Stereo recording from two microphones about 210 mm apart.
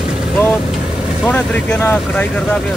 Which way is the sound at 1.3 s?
10° left (ahead or behind).